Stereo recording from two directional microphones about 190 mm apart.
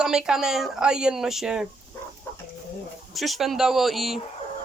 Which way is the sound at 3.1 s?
Centre (ahead or behind).